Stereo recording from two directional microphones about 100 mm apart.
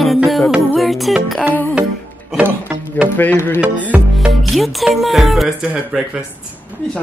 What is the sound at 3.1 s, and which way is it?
Music, 20° left (ahead or behind).